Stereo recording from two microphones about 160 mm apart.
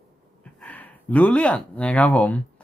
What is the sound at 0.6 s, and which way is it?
Speech, 10° left (ahead or behind).